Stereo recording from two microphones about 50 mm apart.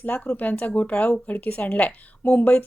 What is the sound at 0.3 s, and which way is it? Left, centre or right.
Speech, left.